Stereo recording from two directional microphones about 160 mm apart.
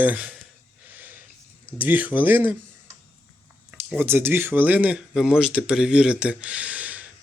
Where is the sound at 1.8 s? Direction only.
10° right (ahead or behind).